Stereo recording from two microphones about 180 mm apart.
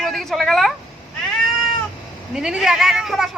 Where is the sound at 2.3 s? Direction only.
5° right (ahead or behind).